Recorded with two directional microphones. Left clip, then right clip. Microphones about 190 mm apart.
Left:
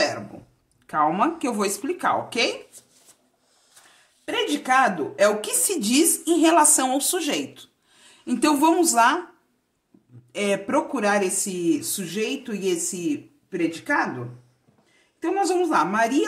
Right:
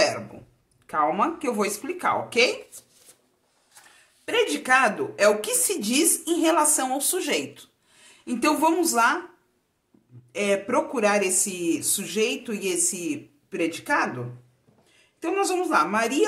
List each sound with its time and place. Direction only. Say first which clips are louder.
0.8 s a woman's voice: left 2 dB; 35° left (ahead or behind)
4.3 s a woman's voice: right 1 dB; 25° left (ahead or behind)
10.3 s speech: even; 30° left (ahead or behind)
15.1 s speech: left 2 dB; 20° left (ahead or behind)